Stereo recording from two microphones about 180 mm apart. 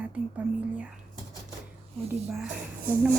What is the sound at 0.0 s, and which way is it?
Speech, 10° right (ahead or behind).